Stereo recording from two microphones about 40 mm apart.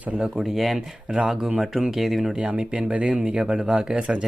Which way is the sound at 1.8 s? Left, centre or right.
Centre.